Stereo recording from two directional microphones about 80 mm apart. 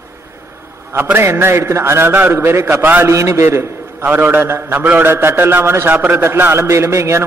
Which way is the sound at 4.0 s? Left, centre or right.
Right.